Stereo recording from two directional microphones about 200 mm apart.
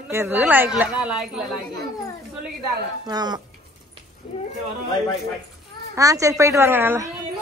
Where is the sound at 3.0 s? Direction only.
20° right (ahead or behind).